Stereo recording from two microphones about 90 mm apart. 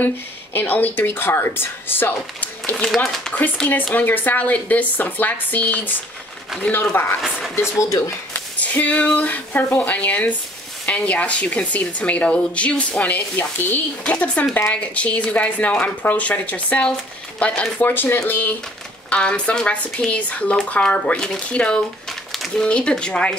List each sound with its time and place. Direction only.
0.0 s a woman's voice: 20° left (ahead or behind)
2.7 s speech: 5° left (ahead or behind)
3.9 s a woman's voice: 20° left (ahead or behind)
7.2 s speech: 5° right (ahead or behind)
8.3 s a woman's voice: 15° left (ahead or behind)
17.8 s a woman's voice: 25° left (ahead or behind)